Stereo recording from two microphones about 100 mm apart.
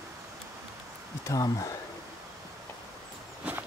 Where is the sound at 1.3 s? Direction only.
35° left (ahead or behind).